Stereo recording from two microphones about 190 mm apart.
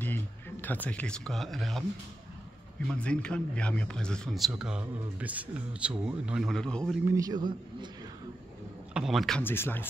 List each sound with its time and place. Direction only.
0.0 s speech: 10° left (ahead or behind)
2.9 s speech: 5° left (ahead or behind)
7.1 s a man's voice: 20° right (ahead or behind)
8.9 s speech: centre (ahead or behind)
9.4 s speech: 10° left (ahead or behind)